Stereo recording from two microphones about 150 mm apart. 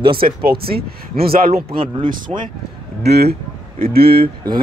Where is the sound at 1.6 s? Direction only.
35° right (ahead or behind).